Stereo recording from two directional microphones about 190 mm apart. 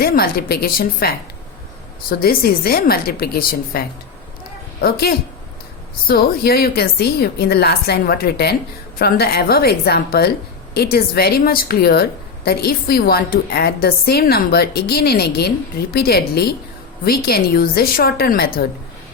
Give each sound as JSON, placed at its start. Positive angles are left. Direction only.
{"t": 0.0, "sound": "a woman's voice", "side_deg": 50}